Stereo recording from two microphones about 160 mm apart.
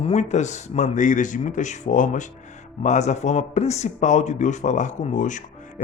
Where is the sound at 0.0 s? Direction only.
45° left (ahead or behind).